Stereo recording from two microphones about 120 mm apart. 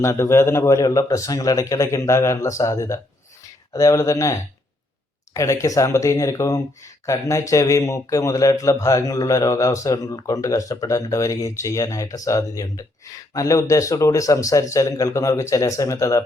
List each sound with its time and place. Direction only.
0.0 s a man's voice: 25° left (ahead or behind)